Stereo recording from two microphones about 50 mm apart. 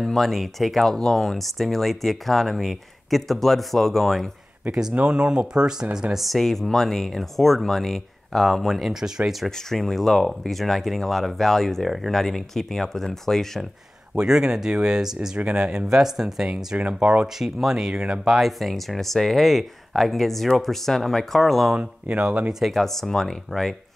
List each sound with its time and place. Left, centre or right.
0.0 s speech: centre
4.6 s speech: centre
6.1 s speech: centre
14.1 s speech: centre
16.7 s speech: centre
21.7 s speech: centre
22.7 s speech: centre